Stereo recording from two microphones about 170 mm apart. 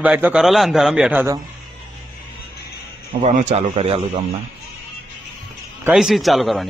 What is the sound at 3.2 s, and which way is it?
Speech, 45° right (ahead or behind).